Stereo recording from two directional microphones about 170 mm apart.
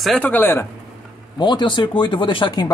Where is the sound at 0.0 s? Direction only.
5° left (ahead or behind).